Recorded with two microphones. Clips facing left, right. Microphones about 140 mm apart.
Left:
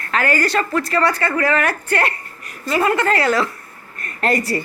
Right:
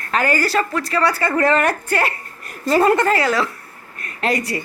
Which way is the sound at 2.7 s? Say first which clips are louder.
Right 3 dB; 35° right (ahead or behind).